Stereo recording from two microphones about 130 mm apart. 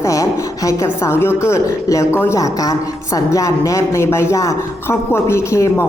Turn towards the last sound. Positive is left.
turn(degrees=20)  # may be behind; listen again after turning